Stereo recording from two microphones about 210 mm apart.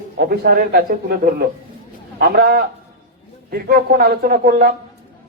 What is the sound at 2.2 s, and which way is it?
A man's voice, 45° right (ahead or behind).